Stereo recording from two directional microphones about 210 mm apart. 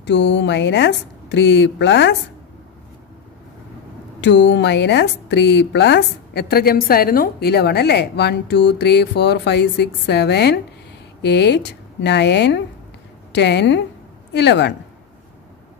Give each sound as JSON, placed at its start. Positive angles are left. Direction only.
{"t": 0.0, "sound": "a woman's voice", "side_deg": 55}
{"t": 4.2, "sound": "a woman's voice", "side_deg": 55}